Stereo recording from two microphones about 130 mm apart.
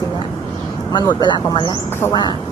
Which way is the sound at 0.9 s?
35° left (ahead or behind).